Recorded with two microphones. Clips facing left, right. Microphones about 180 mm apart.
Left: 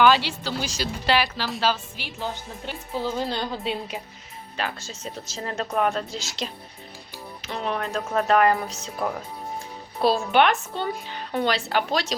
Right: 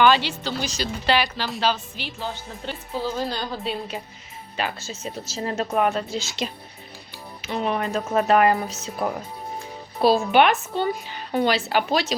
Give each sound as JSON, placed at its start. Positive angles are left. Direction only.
{"t": 0.0, "sound": "speech", "side_deg": 5}
{"t": 3.0, "sound": "music", "side_deg": 20}
{"t": 4.5, "sound": "a woman's voice", "side_deg": -5}